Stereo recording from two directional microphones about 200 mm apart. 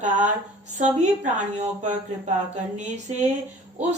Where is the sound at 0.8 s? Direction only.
35° right (ahead or behind).